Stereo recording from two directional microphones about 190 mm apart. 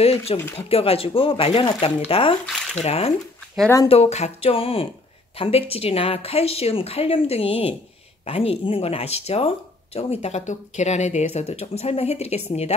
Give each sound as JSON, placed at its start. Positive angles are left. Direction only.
{"t": 0.0, "sound": "speech", "side_deg": 30}